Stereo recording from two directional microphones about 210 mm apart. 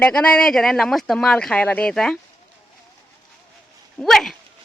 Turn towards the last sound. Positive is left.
turn(degrees=0)  # may be behind; listen again after turning